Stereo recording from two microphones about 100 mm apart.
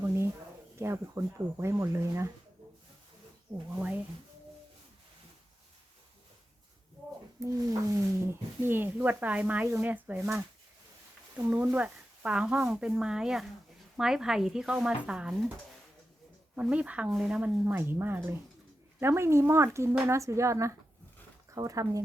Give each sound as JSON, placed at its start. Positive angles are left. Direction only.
{"t": 0.8, "sound": "speech", "side_deg": -25}
{"t": 3.8, "sound": "speech", "side_deg": -20}
{"t": 7.3, "sound": "speech", "side_deg": -35}
{"t": 11.3, "sound": "speech", "side_deg": -25}
{"t": 11.6, "sound": "speech", "side_deg": -10}
{"t": 16.6, "sound": "a woman's voice", "side_deg": -10}